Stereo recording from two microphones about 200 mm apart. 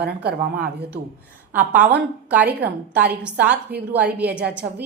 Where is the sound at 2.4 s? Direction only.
55° right (ahead or behind).